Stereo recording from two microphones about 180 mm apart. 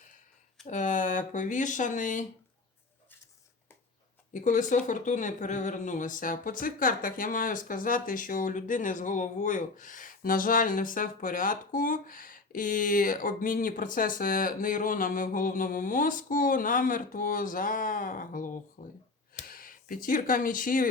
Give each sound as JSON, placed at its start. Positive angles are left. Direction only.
{"t": 0.7, "sound": "speech", "side_deg": 45}
{"t": 4.4, "sound": "speech", "side_deg": 45}